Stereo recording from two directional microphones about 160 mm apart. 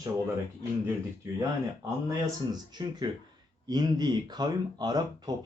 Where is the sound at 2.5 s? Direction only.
25° right (ahead or behind).